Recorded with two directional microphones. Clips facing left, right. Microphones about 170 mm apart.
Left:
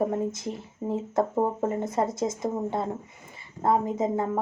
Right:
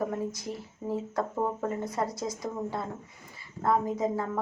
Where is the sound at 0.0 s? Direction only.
25° left (ahead or behind).